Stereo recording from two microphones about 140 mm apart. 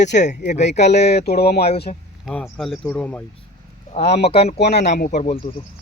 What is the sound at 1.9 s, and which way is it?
Speech, 60° left (ahead or behind).